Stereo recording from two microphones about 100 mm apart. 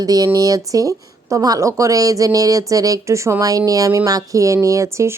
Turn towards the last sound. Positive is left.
turn(degrees=-30)  # may be behind; listen again after turning